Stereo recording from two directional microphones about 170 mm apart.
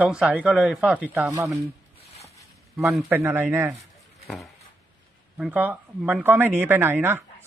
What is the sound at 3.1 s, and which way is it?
Speech, 15° right (ahead or behind).